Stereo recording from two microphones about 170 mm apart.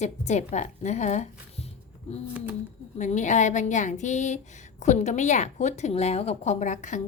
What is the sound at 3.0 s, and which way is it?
A woman's voice, 45° left (ahead or behind).